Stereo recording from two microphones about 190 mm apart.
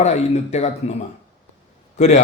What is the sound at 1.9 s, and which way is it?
Speech, 40° left (ahead or behind).